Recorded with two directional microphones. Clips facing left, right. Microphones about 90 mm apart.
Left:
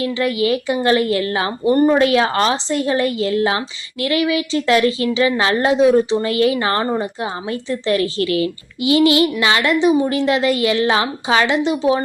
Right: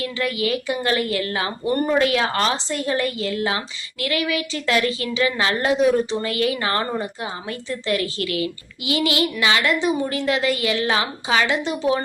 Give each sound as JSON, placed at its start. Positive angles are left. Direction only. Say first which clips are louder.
{"t": 0.0, "sound": "a woman's voice", "louder": "left 5 dB", "side_deg": 25}
{"t": 1.6, "sound": "speech", "louder": "left 9 dB", "side_deg": 15}
{"t": 1.9, "sound": "a woman's voice", "louder": "left 5 dB", "side_deg": 25}